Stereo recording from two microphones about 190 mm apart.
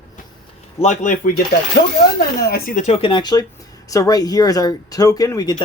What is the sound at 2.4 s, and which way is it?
Speech, 50° left (ahead or behind).